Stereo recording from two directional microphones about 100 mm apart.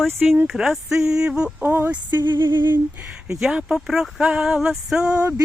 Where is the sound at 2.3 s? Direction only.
25° right (ahead or behind).